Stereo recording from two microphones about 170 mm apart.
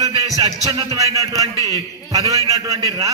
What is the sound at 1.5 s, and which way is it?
Speech, 20° left (ahead or behind).